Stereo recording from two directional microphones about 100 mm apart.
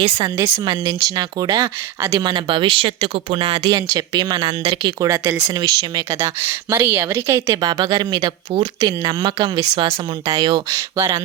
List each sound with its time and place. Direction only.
0.0 s a woman's voice: 45° right (ahead or behind)
4.9 s a woman's voice: 30° right (ahead or behind)